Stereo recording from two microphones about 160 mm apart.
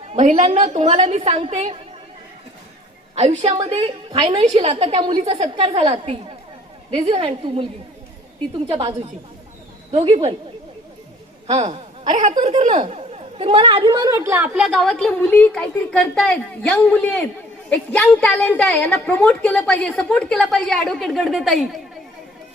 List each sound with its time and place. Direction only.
0.1 s a woman's voice: 45° right (ahead or behind)
3.2 s a woman's voice: 40° right (ahead or behind)
5.2 s a woman's voice: 40° right (ahead or behind)
9.9 s a woman's voice: 40° right (ahead or behind)
11.4 s a woman's voice: 45° right (ahead or behind)
12.5 s a woman's voice: 40° right (ahead or behind); by 21.8 s centre (ahead or behind)